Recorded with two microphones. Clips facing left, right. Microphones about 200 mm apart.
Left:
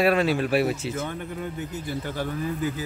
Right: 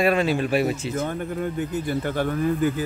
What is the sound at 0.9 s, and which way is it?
Speech, 45° right (ahead or behind).